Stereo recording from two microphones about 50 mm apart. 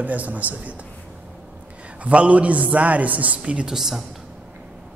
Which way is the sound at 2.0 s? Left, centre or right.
Right.